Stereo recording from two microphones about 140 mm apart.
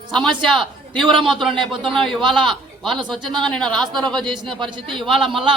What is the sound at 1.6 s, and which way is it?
Speech, 40° right (ahead or behind).